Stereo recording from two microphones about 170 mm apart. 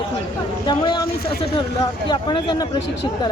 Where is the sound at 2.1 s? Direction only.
25° left (ahead or behind).